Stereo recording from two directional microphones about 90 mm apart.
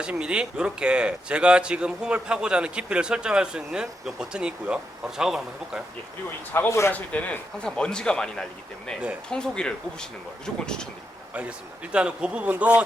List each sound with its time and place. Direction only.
0.0 s speech: 10° right (ahead or behind)
6.5 s speech: 25° left (ahead or behind)
6.9 s speech: 15° left (ahead or behind)
11.3 s speech: 10° right (ahead or behind)